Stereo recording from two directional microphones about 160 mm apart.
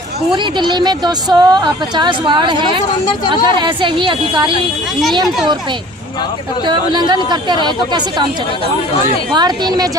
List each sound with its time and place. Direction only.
0.3 s a woman's voice: 30° right (ahead or behind)
6.7 s a woman's voice: 25° right (ahead or behind)
9.3 s a woman's voice: 25° right (ahead or behind)